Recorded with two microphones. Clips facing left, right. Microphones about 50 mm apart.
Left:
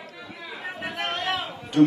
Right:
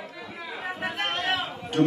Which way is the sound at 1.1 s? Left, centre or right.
Right.